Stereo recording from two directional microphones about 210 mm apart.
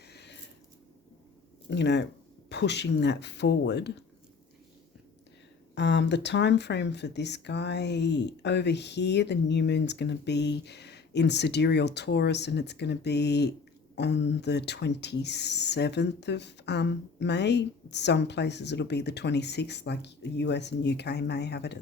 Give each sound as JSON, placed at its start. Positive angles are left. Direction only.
{"t": 0.1, "sound": "a sound", "side_deg": 50}
{"t": 1.7, "sound": "speech", "side_deg": 55}
{"t": 5.7, "sound": "speech", "side_deg": 55}